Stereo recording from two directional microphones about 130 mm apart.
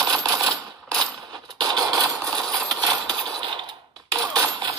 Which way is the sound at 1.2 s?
30° right (ahead or behind).